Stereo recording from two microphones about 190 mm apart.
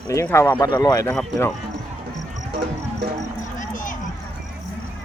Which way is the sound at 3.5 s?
45° left (ahead or behind).